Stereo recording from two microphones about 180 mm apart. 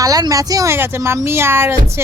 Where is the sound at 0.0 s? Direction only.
20° right (ahead or behind).